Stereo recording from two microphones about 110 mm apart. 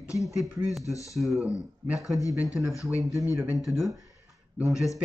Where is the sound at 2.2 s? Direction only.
30° left (ahead or behind).